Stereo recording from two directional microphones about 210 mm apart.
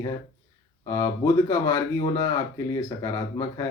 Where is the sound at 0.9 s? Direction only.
15° left (ahead or behind).